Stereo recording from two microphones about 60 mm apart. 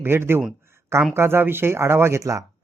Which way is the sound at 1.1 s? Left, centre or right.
Right.